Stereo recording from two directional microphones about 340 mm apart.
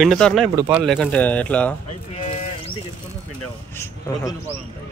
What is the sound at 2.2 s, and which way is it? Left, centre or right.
Bird, centre.